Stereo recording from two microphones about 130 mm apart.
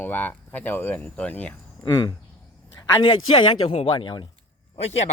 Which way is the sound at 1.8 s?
25° left (ahead or behind).